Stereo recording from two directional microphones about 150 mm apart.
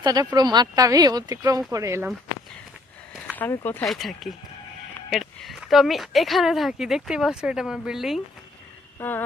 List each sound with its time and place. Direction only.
0.0 s speech: 25° right (ahead or behind)
3.3 s speech: 15° left (ahead or behind)
3.8 s speech: centre (ahead or behind)
9.0 s speech: 15° left (ahead or behind)